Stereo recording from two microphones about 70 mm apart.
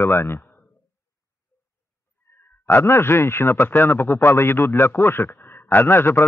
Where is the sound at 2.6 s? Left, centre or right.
Left.